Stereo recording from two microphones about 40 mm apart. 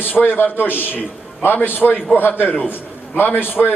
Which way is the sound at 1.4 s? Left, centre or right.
Left.